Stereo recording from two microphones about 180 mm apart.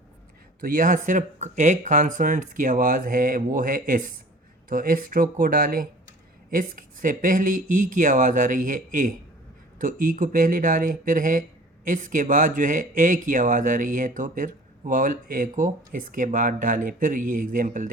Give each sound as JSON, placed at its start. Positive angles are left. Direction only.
{"t": 0.6, "sound": "speech", "side_deg": -50}